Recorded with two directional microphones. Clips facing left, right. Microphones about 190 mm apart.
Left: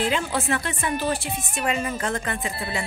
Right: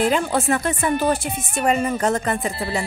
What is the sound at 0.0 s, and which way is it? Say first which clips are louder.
Speech: right 5 dB; 45° right (ahead or behind).